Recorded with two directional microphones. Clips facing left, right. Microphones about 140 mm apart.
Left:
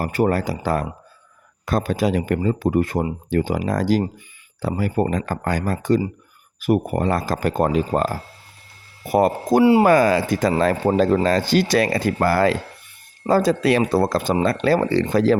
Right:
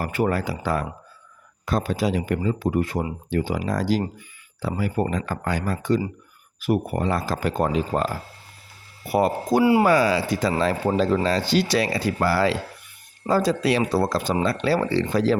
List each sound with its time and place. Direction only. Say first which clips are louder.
0.0 s speech: left 3 dB; 40° left (ahead or behind)
1.6 s speech: left 3 dB; 55° left (ahead or behind)